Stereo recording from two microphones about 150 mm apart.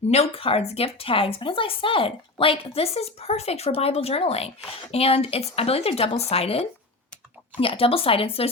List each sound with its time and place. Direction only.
0.1 s a woman's voice: 40° left (ahead or behind)